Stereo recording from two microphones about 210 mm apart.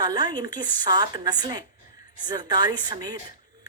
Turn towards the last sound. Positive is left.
turn(degrees=-20)  # may be behind; listen again after turning